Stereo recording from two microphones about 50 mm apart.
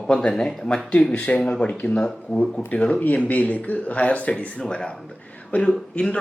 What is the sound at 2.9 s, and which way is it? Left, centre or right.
Speech, left.